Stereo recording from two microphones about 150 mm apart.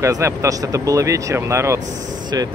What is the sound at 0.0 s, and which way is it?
Speech, 20° right (ahead or behind).